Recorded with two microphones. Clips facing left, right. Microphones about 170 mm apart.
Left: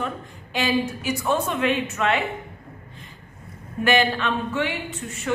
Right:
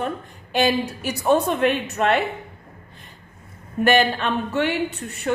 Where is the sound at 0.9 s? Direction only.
35° right (ahead or behind).